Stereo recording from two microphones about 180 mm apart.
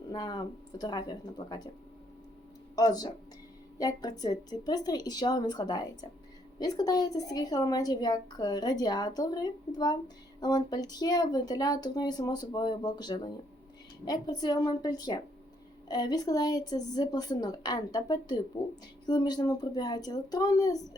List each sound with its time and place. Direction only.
0.1 s a woman's voice: 20° left (ahead or behind)
2.7 s a woman's voice: 20° left (ahead or behind)